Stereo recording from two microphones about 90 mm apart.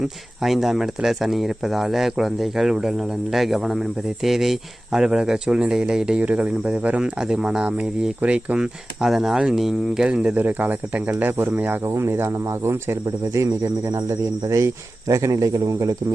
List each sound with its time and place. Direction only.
0.0 s speech: centre (ahead or behind)
10.3 s speech: 20° right (ahead or behind); by 16.0 s 40° right (ahead or behind)